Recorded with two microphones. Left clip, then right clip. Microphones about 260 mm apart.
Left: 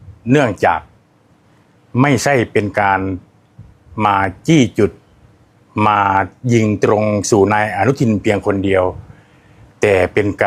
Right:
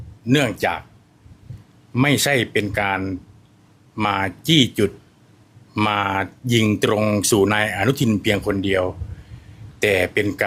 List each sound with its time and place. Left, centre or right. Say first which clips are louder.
0.3 s speech: left 6 dB; centre
1.9 s speech: left 4 dB; centre